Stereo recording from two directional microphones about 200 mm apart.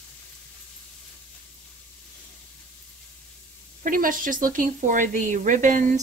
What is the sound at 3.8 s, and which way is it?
Speech, 45° right (ahead or behind).